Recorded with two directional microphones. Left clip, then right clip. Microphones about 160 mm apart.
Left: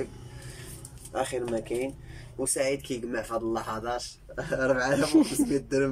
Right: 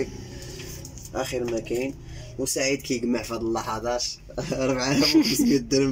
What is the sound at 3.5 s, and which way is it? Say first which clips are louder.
Speech: right 4 dB; 20° right (ahead or behind).